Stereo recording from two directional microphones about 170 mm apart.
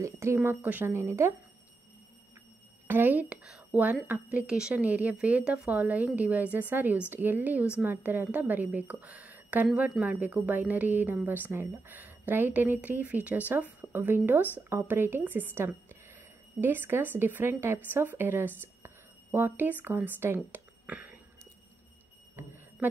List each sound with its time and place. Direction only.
0.0 s a woman's voice: 15° right (ahead or behind)
2.9 s a woman's voice: 10° right (ahead or behind)